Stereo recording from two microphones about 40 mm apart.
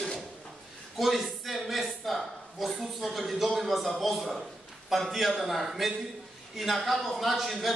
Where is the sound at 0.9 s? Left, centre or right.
Centre.